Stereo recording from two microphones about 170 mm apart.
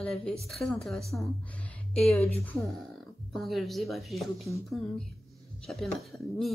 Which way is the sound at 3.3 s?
Centre (ahead or behind).